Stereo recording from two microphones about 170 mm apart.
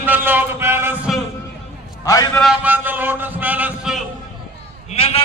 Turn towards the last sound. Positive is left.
turn(degrees=35)  # may be behind; listen again after turning